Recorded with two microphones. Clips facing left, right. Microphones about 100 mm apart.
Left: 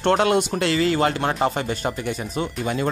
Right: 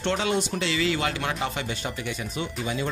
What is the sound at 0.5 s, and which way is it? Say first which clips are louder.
Speech: left 5 dB; 45° left (ahead or behind).